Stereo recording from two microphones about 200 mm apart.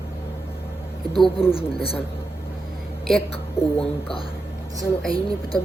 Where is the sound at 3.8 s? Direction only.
25° left (ahead or behind).